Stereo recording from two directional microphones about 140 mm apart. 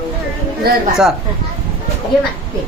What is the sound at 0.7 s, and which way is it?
Speech, 90° right.